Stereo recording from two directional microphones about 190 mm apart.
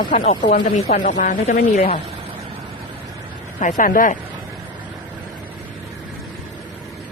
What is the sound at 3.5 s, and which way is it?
Speech, 40° left (ahead or behind).